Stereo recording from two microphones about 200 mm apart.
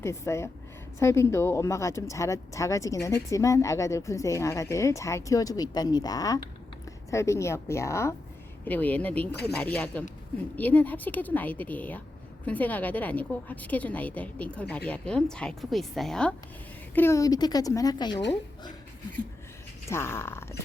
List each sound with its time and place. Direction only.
0.0 s speech: 15° left (ahead or behind)
9.3 s speech: 55° left (ahead or behind)
9.6 s speech: 5° left (ahead or behind)
19.9 s speech: 10° left (ahead or behind)